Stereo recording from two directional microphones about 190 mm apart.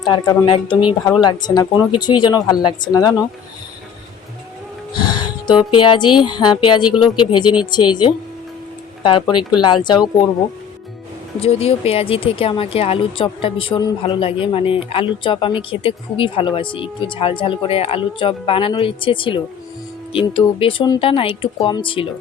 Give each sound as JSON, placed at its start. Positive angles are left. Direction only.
{"t": 0.0, "sound": "speech", "side_deg": 20}
{"t": 5.1, "sound": "speech", "side_deg": 25}
{"t": 11.3, "sound": "speech", "side_deg": 30}